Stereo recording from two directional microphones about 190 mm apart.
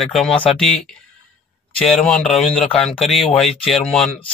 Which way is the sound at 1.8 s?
5° left (ahead or behind).